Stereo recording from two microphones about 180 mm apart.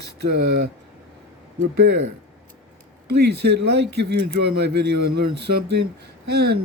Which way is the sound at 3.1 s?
65° right (ahead or behind).